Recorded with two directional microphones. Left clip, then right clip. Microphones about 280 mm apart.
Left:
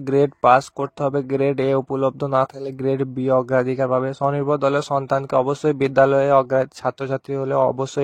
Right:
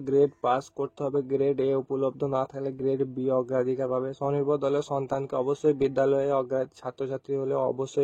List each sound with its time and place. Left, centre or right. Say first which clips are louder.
0.1 s speech: left 9 dB; left